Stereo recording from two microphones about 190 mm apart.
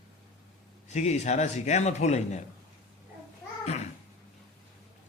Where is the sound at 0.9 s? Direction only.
35° left (ahead or behind).